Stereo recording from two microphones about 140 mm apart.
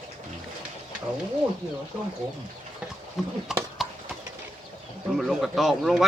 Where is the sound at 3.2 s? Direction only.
Centre (ahead or behind).